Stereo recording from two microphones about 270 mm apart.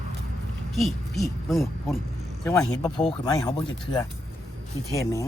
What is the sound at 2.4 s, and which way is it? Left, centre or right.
Speech, centre.